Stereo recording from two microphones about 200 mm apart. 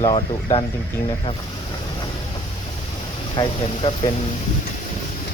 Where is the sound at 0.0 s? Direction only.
25° left (ahead or behind).